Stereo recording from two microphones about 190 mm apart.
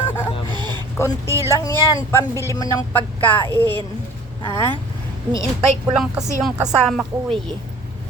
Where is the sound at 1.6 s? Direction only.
15° left (ahead or behind).